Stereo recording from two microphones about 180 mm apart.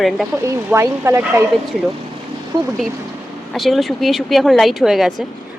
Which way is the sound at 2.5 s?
25° right (ahead or behind).